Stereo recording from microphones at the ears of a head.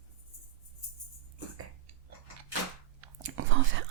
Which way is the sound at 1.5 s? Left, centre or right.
Right.